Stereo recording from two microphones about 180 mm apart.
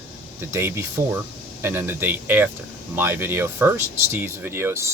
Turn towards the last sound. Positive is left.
turn(degrees=-15)  # may be behind; listen again after turning